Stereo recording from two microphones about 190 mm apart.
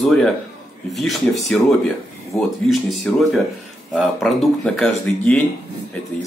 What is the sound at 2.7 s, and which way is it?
Speech, centre (ahead or behind).